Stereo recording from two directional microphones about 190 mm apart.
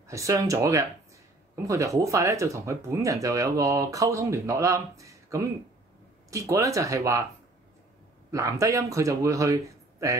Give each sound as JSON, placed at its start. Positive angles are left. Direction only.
{"t": 0.1, "sound": "speech", "side_deg": -15}
{"t": 8.3, "sound": "speech", "side_deg": -15}